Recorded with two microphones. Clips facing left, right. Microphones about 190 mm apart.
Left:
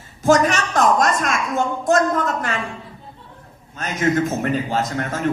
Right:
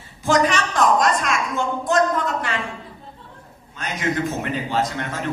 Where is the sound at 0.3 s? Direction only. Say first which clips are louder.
Left 3 dB; 45° left (ahead or behind).